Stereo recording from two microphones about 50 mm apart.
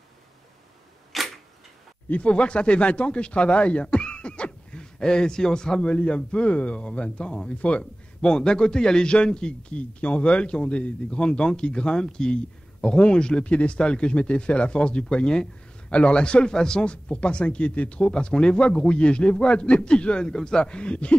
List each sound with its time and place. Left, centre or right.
1.1 s camera: centre
2.0 s a man's voice: left
3.8 s beatboxing: centre
5.9 s a man's voice: left